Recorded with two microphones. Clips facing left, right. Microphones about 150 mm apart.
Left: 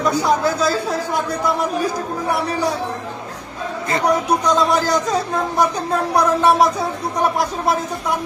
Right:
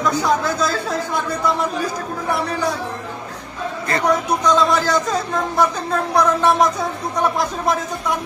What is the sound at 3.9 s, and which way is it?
Speech, 10° left (ahead or behind).